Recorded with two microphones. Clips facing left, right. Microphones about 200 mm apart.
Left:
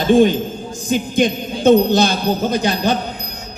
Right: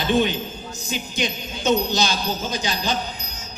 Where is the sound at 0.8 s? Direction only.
50° left (ahead or behind).